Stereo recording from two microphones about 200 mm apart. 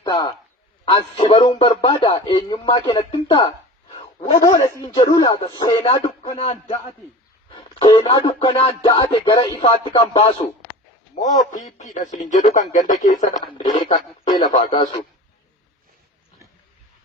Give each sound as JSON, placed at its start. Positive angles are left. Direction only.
{"t": 0.0, "sound": "a man's voice", "side_deg": 20}
{"t": 0.9, "sound": "music", "side_deg": 25}
{"t": 11.1, "sound": "a man's voice", "side_deg": 40}
{"t": 13.9, "sound": "music", "side_deg": 20}